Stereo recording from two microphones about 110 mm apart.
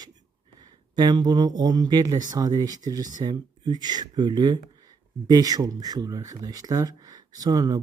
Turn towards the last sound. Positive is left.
turn(degrees=-35)  # may be behind; listen again after turning